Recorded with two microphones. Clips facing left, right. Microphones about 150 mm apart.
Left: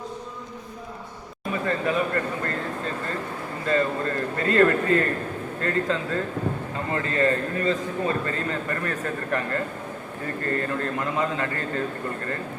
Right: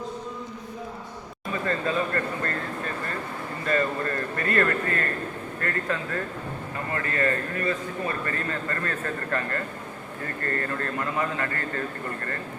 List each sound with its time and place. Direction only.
1.6 s speech: 15° left (ahead or behind)
3.7 s a man's voice: 20° left (ahead or behind)